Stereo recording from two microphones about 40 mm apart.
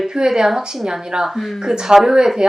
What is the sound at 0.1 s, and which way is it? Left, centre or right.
Speech, centre.